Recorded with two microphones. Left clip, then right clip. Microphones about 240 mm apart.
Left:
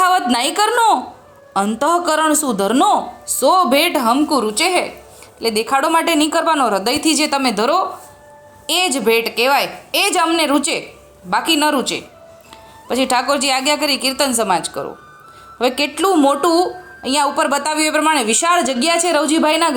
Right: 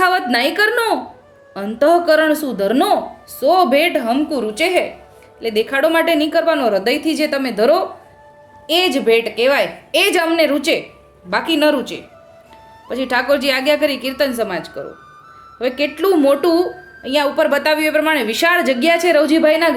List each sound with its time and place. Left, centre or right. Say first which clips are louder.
0.0 s a woman's voice: even; centre